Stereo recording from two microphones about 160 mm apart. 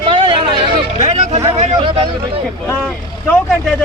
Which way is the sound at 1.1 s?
45° right (ahead or behind).